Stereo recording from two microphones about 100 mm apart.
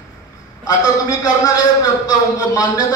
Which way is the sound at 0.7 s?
40° left (ahead or behind).